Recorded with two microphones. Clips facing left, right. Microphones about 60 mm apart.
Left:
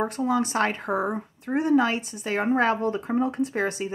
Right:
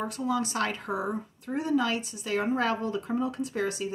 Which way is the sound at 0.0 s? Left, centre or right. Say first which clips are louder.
Left 5 dB; left.